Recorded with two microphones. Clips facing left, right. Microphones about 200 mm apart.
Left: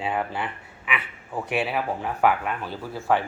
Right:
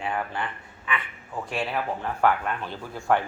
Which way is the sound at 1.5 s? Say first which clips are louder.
Left 3 dB; 10° left (ahead or behind).